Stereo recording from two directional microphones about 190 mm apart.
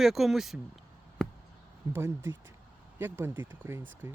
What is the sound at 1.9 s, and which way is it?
Speech, 15° right (ahead or behind).